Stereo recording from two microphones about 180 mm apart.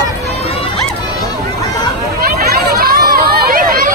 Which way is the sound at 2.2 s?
55° right (ahead or behind).